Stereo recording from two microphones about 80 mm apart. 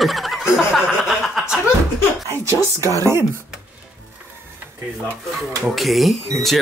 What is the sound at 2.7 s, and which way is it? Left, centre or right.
Speech, right.